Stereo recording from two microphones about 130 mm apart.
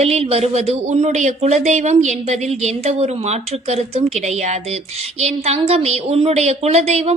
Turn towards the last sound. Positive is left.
turn(degrees=-55)  # may be behind; listen again after turning